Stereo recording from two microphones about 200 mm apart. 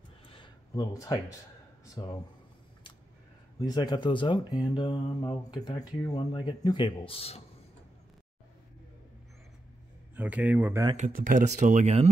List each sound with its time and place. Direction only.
0.3 s a sound: 20° left (ahead or behind)
2.0 s speech: 20° left (ahead or behind)
3.5 s speech: 20° left (ahead or behind)
10.1 s speech: 5° right (ahead or behind)
11.1 s speech: 40° right (ahead or behind)